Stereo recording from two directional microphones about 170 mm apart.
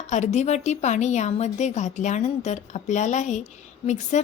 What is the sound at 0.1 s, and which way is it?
A woman's voice, 45° left (ahead or behind).